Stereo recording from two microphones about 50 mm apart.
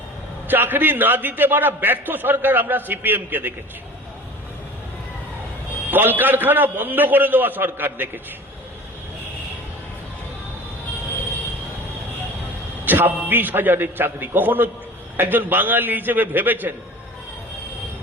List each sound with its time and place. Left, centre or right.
0.4 s a man's voice: right
5.9 s a man's voice: right
12.8 s a man's voice: right